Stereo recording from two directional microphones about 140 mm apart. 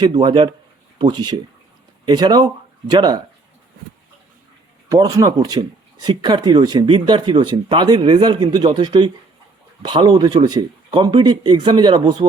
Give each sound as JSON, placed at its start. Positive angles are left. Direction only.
{"t": 0.2, "sound": "speech", "side_deg": -35}
{"t": 4.9, "sound": "speech", "side_deg": -25}